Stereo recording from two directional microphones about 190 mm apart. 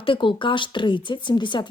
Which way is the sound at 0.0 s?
25° left (ahead or behind).